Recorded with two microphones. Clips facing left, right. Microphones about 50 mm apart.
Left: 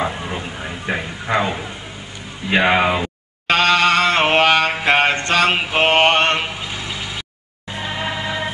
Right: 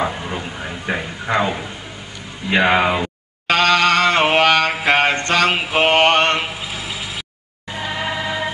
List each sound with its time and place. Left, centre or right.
0.0 s a sound: centre
2.5 s speech: centre
3.4 s chant: centre
4.9 s a sound: centre
5.7 s mantra: centre
7.7 s music: centre